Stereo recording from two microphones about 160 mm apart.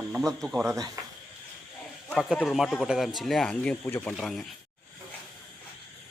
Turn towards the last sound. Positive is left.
turn(degrees=0)  # may be behind; listen again after turning